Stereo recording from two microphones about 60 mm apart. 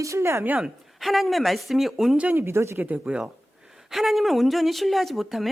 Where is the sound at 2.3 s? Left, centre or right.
Right.